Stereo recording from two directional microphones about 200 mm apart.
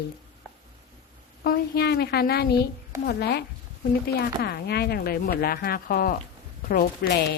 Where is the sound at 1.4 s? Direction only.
50° left (ahead or behind).